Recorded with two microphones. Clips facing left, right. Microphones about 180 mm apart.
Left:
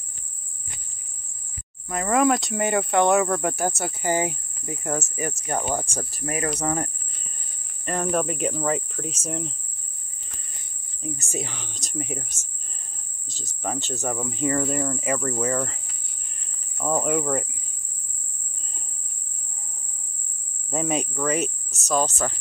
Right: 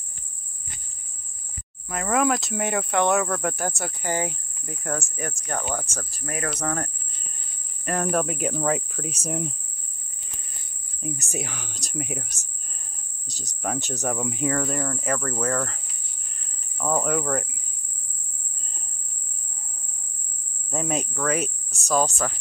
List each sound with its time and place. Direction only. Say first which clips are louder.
1.9 s speech: left 2 dB; centre (ahead or behind)
11.0 s speech: even; 15° right (ahead or behind)
13.3 s speech: right 1 dB; 10° right (ahead or behind)
14.5 s speech: left 2 dB; 5° left (ahead or behind)
20.7 s speech: left 2 dB; centre (ahead or behind)